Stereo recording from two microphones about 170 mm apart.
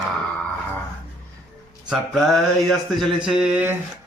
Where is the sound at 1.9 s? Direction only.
Centre (ahead or behind).